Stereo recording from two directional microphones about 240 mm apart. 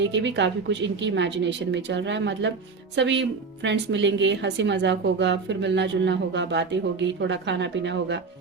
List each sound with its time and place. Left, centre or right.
0.0 s a woman's voice: right